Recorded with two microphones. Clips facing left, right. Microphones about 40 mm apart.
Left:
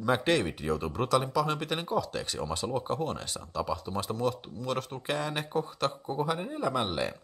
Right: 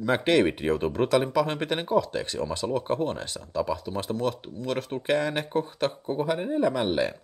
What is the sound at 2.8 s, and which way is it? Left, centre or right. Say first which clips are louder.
Speech: right 4 dB; centre.